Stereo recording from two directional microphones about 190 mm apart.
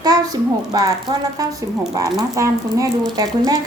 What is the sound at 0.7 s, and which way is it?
A woman's voice, 20° right (ahead or behind).